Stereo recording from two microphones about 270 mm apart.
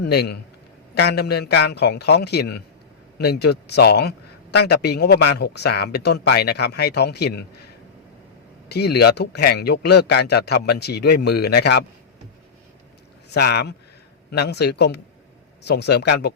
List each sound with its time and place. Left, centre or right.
0.0 s a man's voice: left
8.7 s a man's voice: left
13.3 s a man's voice: left